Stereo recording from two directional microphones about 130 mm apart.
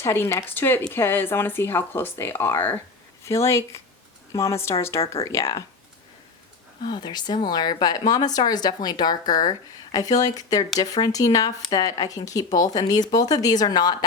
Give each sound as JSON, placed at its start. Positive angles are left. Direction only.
{"t": 0.0, "sound": "speech", "side_deg": 20}
{"t": 6.8, "sound": "speech", "side_deg": 35}